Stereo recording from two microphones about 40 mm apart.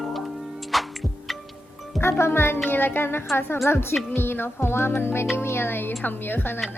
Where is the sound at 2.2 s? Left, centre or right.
Left.